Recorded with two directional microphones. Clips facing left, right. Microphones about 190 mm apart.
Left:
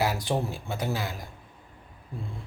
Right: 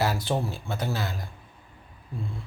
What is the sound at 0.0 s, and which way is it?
Speech, 15° left (ahead or behind).